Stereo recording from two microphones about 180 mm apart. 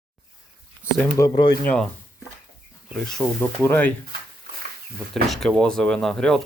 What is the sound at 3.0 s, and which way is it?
Speech, 5° left (ahead or behind).